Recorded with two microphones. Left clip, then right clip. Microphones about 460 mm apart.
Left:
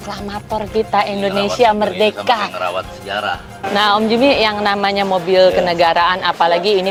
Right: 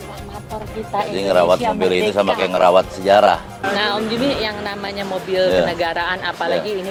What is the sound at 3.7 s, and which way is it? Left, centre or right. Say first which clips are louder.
Speech: left 7 dB; left.